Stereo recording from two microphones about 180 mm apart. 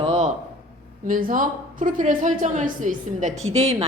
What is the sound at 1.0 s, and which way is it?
Speech, 50° right (ahead or behind).